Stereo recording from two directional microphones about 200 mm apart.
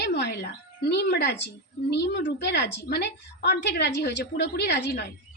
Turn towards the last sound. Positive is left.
turn(degrees=60)  # may be behind; listen again after turning